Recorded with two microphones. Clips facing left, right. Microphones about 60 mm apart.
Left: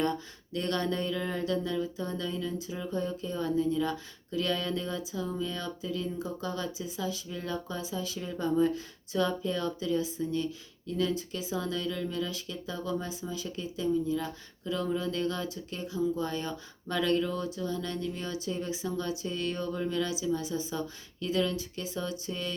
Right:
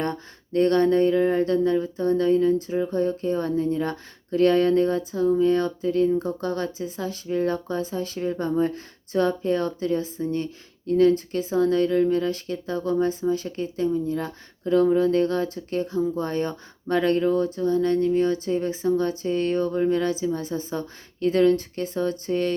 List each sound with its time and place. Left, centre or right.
0.0 s speech: right